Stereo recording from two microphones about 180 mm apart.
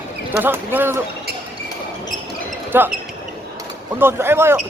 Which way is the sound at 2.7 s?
10° right (ahead or behind).